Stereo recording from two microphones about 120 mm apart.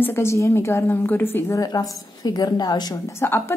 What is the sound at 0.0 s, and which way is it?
A woman's voice, 20° left (ahead or behind).